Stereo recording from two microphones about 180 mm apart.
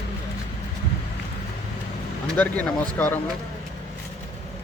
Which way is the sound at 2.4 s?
10° left (ahead or behind).